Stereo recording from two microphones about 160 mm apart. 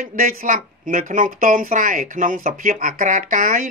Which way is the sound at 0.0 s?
65° right (ahead or behind).